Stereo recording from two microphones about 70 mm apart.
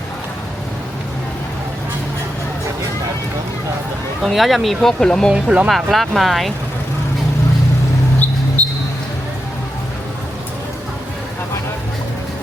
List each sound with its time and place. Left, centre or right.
4.2 s speech: centre
5.3 s speech: centre
5.6 s speech: centre
8.6 s a sound: left